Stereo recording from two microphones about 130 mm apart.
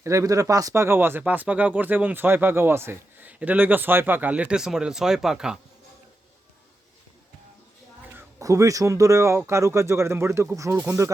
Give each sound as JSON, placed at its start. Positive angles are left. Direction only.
{"t": 0.0, "sound": "speech", "side_deg": -25}
{"t": 8.4, "sound": "speech", "side_deg": -25}